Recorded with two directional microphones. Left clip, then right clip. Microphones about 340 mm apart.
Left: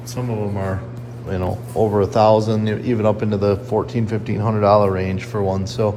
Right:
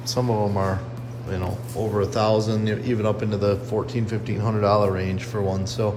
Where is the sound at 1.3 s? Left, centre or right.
Centre.